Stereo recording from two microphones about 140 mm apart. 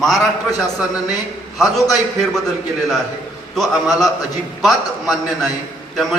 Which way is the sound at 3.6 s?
Centre (ahead or behind).